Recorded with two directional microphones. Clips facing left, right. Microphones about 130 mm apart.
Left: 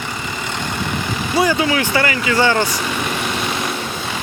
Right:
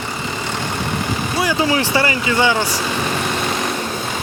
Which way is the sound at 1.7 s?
25° right (ahead or behind).